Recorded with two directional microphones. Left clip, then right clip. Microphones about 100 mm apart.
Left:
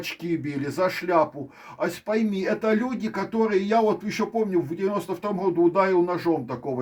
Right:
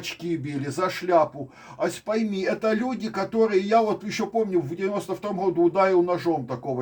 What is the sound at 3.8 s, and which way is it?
Speech, 45° left (ahead or behind).